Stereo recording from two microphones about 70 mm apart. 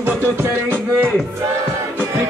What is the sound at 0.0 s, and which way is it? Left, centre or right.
Music, right.